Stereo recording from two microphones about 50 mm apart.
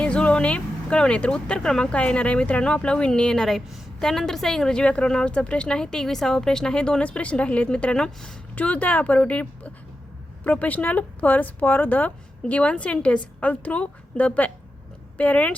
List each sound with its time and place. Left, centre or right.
0.0 s speech: left
3.4 s a woman's voice: centre
8.5 s a woman's voice: left
12.5 s a woman's voice: left